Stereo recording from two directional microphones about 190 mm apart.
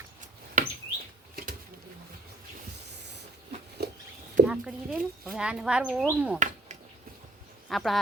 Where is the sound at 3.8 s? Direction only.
60° right (ahead or behind).